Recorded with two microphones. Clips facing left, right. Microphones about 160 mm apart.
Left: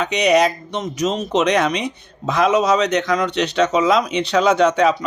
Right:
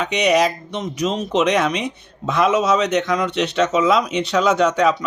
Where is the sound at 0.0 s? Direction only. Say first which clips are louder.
Left 1 dB; centre (ahead or behind).